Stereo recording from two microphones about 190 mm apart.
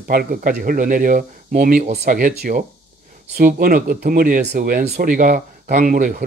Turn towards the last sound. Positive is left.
turn(degrees=-45)  # may be behind; listen again after turning